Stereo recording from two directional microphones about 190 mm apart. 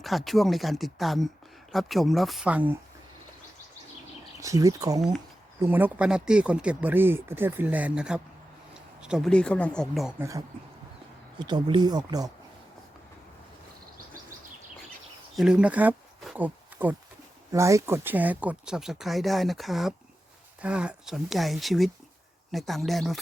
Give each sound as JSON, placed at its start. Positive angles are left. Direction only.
{"t": 0.0, "sound": "speech", "side_deg": 0}
{"t": 4.4, "sound": "speech", "side_deg": -15}
{"t": 10.2, "sound": "speech", "side_deg": -15}
{"t": 15.4, "sound": "speech", "side_deg": -5}